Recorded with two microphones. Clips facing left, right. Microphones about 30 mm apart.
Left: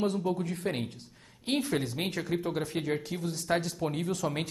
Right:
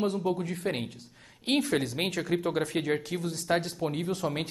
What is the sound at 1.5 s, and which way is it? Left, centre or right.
Speech, right.